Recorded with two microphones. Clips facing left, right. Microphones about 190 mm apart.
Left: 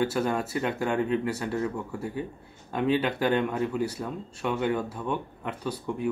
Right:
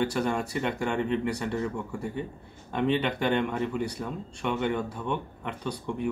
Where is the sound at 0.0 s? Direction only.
5° left (ahead or behind).